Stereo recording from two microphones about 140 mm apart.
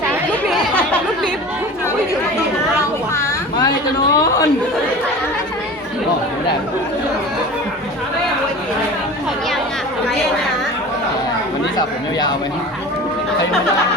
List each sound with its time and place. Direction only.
4.1 s chatter: 25° left (ahead or behind)